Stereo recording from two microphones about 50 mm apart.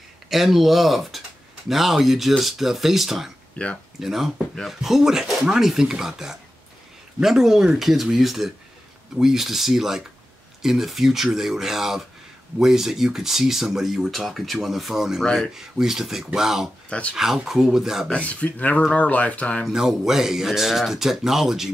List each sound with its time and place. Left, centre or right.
0.3 s speech: centre
3.6 s speech: left
4.0 s speech: centre
18.1 s speech: left
19.6 s speech: centre